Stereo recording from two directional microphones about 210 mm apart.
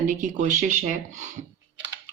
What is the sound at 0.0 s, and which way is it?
Speech, 40° right (ahead or behind).